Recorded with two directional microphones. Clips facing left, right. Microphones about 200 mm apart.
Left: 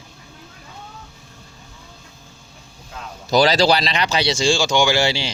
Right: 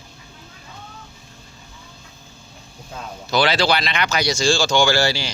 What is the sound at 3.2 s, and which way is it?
Speech, 40° left (ahead or behind).